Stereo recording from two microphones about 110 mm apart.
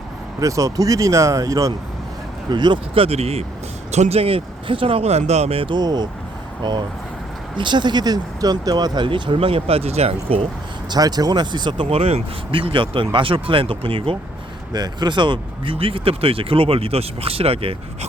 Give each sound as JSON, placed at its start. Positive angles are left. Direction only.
{"t": 0.3, "sound": "speech", "side_deg": -30}
{"t": 2.5, "sound": "speech", "side_deg": -45}
{"t": 3.9, "sound": "speech", "side_deg": -80}
{"t": 10.8, "sound": "speech", "side_deg": -40}
{"t": 11.9, "sound": "speech", "side_deg": -65}
{"t": 14.7, "sound": "speech", "side_deg": -40}